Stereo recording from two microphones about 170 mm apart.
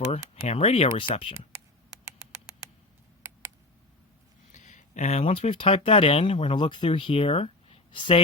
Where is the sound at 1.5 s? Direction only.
15° right (ahead or behind).